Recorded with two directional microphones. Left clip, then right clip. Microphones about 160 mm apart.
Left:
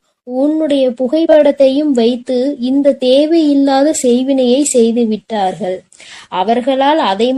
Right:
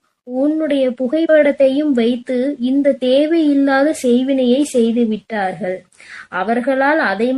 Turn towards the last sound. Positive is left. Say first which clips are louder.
# left 3 dB
turn(degrees=30)  # may be behind; listen again after turning